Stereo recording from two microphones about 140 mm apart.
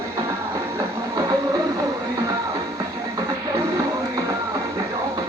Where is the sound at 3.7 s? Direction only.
25° right (ahead or behind).